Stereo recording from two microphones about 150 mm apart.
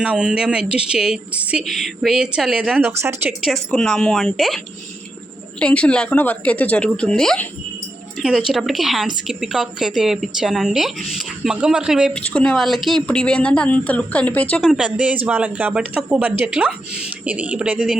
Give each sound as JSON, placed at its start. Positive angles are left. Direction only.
{"t": 0.0, "sound": "a woman's voice", "side_deg": -5}
{"t": 3.4, "sound": "a woman's voice", "side_deg": 0}
{"t": 12.2, "sound": "speech", "side_deg": 5}
{"t": 14.6, "sound": "speech", "side_deg": -5}